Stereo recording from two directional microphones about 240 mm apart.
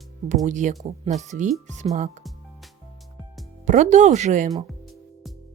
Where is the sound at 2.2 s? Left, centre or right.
Centre.